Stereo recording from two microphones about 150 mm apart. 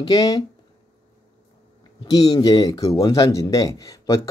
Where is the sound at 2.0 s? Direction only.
25° left (ahead or behind).